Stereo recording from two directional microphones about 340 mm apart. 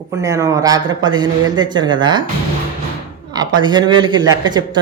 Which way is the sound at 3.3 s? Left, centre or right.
Centre.